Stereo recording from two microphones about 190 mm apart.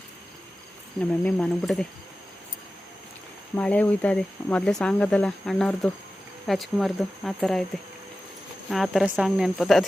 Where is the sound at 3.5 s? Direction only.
10° left (ahead or behind).